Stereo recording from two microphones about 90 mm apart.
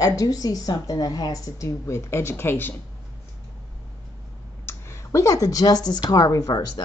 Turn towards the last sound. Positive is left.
turn(degrees=50)  # may be behind; listen again after turning